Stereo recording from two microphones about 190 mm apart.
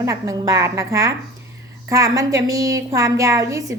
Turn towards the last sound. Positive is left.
turn(degrees=-15)  # may be behind; listen again after turning